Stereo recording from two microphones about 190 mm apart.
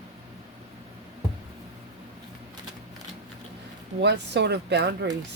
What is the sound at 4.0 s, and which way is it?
Speech, 65° right (ahead or behind).